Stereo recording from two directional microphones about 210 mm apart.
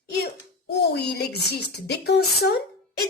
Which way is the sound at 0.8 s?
55° left (ahead or behind).